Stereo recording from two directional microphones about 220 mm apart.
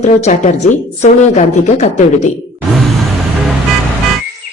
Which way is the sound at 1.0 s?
30° left (ahead or behind).